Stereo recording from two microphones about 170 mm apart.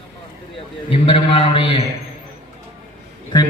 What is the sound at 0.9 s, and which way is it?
Speech, 35° left (ahead or behind).